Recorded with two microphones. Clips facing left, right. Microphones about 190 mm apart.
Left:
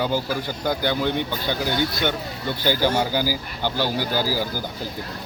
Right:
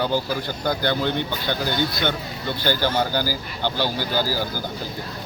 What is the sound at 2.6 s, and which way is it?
Speech, 10° left (ahead or behind).